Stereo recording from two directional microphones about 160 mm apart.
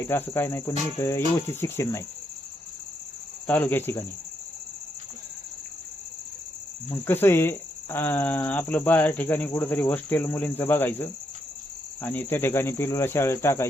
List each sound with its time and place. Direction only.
0.1 s speech: 15° left (ahead or behind)
3.4 s speech: 10° left (ahead or behind)
6.9 s speech: 15° left (ahead or behind)